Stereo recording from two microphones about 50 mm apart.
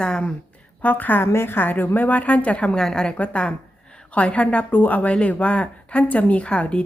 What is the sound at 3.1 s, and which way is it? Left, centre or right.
A woman's voice, left.